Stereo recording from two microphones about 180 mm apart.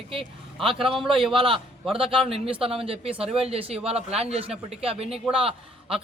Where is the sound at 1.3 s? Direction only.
30° right (ahead or behind).